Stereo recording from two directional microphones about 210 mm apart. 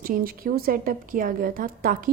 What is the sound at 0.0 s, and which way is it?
A woman's voice, 45° right (ahead or behind).